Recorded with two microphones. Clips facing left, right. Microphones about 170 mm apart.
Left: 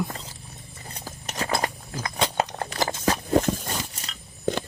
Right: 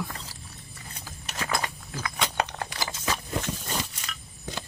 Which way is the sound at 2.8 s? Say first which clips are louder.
Left 8 dB; 45° left (ahead or behind).